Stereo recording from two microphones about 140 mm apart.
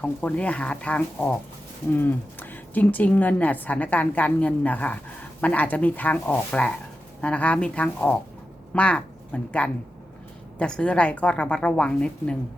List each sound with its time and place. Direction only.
0.0 s a woman's voice: 10° left (ahead or behind)